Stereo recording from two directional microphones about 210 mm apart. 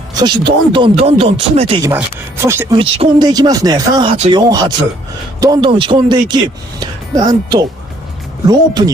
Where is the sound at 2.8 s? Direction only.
25° right (ahead or behind).